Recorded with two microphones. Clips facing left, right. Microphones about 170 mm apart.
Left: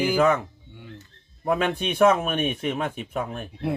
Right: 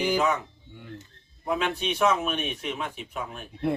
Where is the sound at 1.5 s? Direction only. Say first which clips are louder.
Left 4 dB; 50° left (ahead or behind).